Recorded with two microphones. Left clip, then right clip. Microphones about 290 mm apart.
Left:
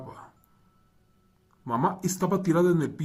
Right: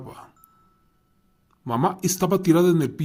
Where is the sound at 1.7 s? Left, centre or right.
Right.